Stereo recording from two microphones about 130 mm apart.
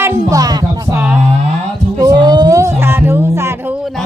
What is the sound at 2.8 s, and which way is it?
Music, 15° right (ahead or behind).